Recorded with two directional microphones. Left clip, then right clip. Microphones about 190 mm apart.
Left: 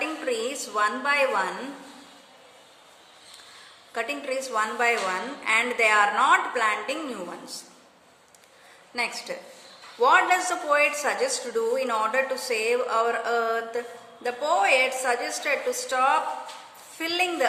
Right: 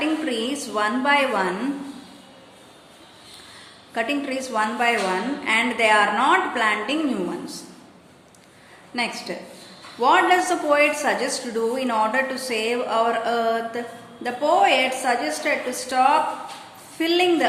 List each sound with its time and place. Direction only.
0.0 s a woman's voice: 20° left (ahead or behind)
3.9 s a woman's voice: 20° left (ahead or behind)
9.0 s a woman's voice: 25° left (ahead or behind)